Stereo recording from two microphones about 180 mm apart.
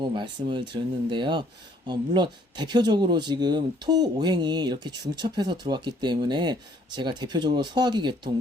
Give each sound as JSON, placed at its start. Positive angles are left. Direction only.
{"t": 0.1, "sound": "speech", "side_deg": -25}